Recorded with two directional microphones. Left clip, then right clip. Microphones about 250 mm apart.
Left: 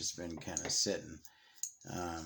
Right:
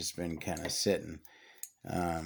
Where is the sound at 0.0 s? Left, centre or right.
Right.